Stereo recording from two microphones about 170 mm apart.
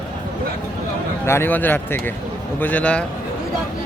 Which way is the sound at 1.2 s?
15° left (ahead or behind).